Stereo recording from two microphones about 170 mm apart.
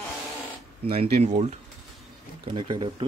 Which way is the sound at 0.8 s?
35° right (ahead or behind).